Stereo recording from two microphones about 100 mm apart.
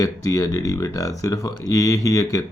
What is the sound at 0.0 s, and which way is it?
Speech, 35° left (ahead or behind).